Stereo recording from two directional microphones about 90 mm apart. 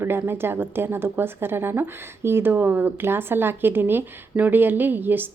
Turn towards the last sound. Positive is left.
turn(degrees=-20)  # may be behind; listen again after turning